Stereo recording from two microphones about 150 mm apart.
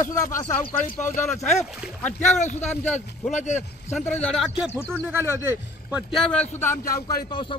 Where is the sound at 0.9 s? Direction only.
55° left (ahead or behind).